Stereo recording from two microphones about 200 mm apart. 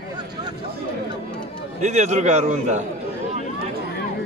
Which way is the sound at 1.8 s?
35° right (ahead or behind).